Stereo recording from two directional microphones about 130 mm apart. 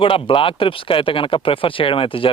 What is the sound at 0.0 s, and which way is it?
Speech, 40° left (ahead or behind).